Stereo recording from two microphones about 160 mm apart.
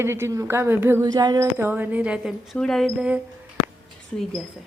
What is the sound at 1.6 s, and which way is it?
A woman's voice, 10° right (ahead or behind).